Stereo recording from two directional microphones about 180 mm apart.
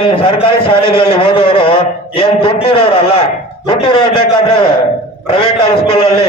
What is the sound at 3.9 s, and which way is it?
Speech, 30° left (ahead or behind).